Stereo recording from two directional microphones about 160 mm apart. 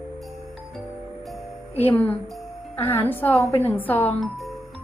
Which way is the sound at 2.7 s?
15° left (ahead or behind).